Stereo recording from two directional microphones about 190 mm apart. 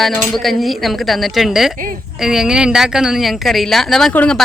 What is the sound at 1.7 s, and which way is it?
Speech, 45° right (ahead or behind).